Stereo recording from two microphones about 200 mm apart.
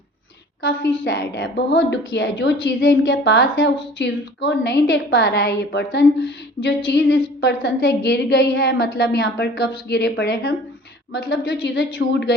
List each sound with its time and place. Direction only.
1.0 s a woman's voice: 55° left (ahead or behind)